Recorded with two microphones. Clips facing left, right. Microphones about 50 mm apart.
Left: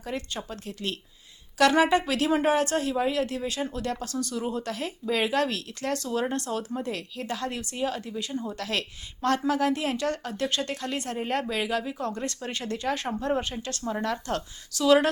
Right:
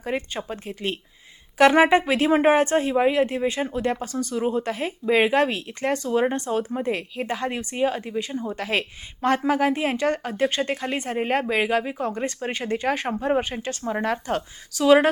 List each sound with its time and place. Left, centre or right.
0.0 s a woman's voice: right